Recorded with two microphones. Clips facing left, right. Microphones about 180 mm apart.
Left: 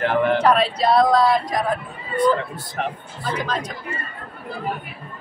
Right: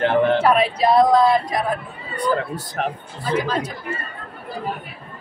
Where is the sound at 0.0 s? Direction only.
25° right (ahead or behind).